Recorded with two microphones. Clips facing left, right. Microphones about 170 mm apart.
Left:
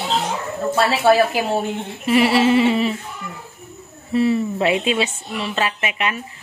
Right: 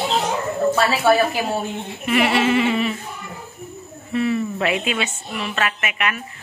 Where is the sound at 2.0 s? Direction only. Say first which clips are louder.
Left 3 dB; 30° left (ahead or behind).